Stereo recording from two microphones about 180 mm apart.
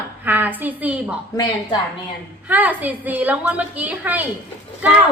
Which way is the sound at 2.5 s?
10° right (ahead or behind).